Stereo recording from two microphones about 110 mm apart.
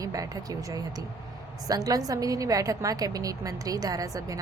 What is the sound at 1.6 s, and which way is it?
A woman's voice, 35° right (ahead or behind).